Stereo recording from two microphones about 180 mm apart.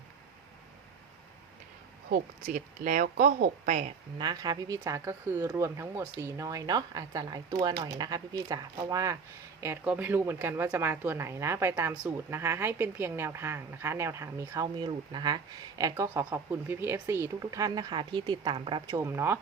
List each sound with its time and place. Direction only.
2.0 s a woman's voice: 50° right (ahead or behind)
4.2 s speech: 20° right (ahead or behind)